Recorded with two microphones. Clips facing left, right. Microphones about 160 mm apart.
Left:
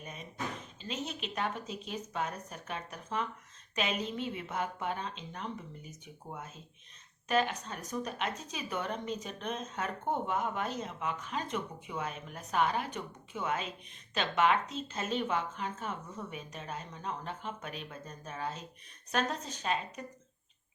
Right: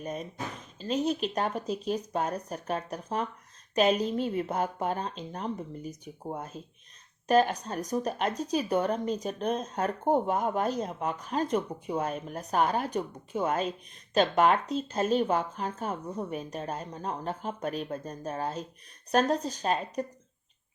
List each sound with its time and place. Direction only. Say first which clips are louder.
0.0 s drawer open or close: right 11 dB; 40° right (ahead or behind)
0.8 s a woman's voice: right 12 dB; 40° right (ahead or behind)